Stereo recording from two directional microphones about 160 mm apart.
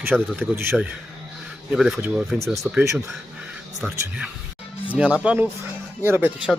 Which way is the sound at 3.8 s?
10° right (ahead or behind).